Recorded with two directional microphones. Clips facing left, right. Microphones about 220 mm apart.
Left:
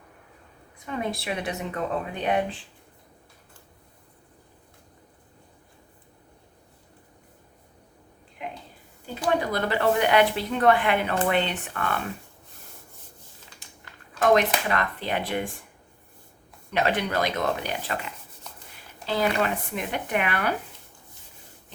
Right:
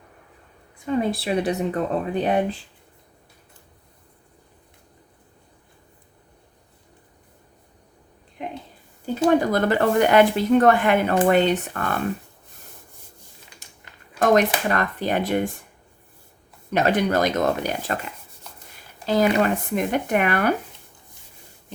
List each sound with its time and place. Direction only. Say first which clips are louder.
0.9 s speech: right 7 dB; 35° right (ahead or behind)
9.4 s speech: right 5 dB; 45° right (ahead or behind)
14.2 s speech: right 3 dB; 45° right (ahead or behind)
16.7 s speech: right 5 dB; 45° right (ahead or behind)
19.0 s speech: right 6 dB; 45° right (ahead or behind)